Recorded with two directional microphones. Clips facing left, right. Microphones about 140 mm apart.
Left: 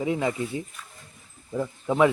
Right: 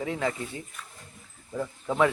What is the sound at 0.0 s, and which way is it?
A man's voice, 15° left (ahead or behind).